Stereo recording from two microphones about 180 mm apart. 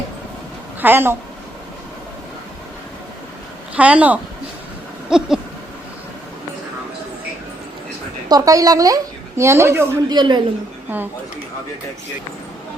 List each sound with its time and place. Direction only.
0.8 s a woman's voice: 10° right (ahead or behind)
3.8 s a woman's voice: 5° right (ahead or behind)
5.0 s a sound: 5° right (ahead or behind)
8.3 s a woman's voice: 20° right (ahead or behind)
10.9 s a woman's voice: 10° right (ahead or behind)